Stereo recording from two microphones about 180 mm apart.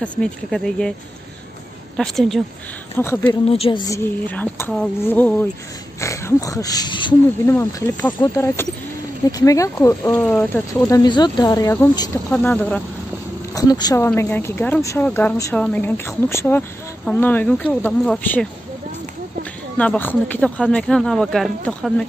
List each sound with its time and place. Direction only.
0.0 s speech: 5° left (ahead or behind)
2.0 s speech: centre (ahead or behind)
3.0 s speech: 15° left (ahead or behind)
3.4 s speech: 35° left (ahead or behind)
3.8 s speech: 15° left (ahead or behind)
7.4 s speech: 10° left (ahead or behind)
12.3 s speech: 10° left (ahead or behind)
13.6 s speech: 20° left (ahead or behind)
19.8 s speech: 10° left (ahead or behind)